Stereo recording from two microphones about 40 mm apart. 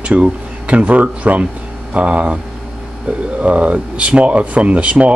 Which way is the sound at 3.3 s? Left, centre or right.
Right.